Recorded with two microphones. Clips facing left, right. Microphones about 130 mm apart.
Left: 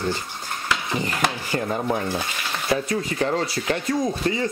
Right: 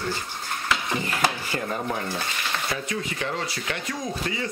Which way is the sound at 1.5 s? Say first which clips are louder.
Left 4 dB; 20° left (ahead or behind).